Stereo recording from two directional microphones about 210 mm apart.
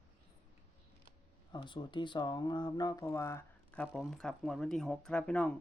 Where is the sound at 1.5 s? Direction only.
20° left (ahead or behind).